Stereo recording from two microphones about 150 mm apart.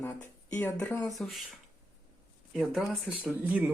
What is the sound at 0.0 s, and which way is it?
Speech, 15° left (ahead or behind).